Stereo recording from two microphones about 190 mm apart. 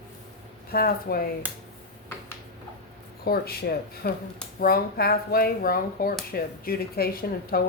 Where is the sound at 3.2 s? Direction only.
55° left (ahead or behind).